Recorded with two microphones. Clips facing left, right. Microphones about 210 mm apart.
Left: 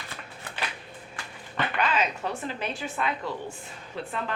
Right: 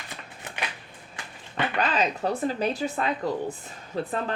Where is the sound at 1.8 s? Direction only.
35° right (ahead or behind).